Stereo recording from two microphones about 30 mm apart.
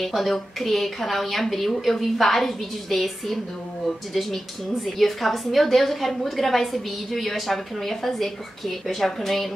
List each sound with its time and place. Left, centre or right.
0.0 s a woman's voice: centre